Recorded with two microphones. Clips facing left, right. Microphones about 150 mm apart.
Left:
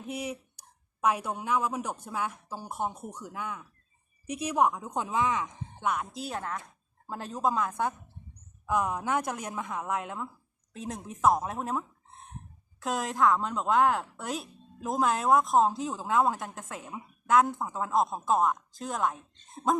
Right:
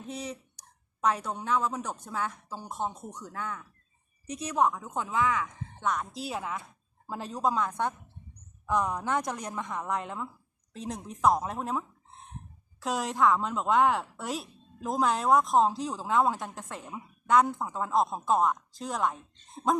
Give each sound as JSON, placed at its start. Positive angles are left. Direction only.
{"t": 0.0, "sound": "a woman's voice", "side_deg": 10}
{"t": 6.2, "sound": "a woman's voice", "side_deg": 0}